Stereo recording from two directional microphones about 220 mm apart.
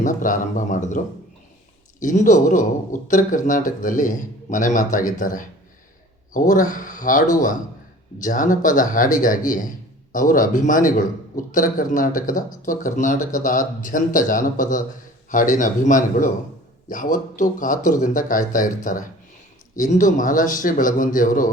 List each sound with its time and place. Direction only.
0.0 s a man's voice: 35° left (ahead or behind)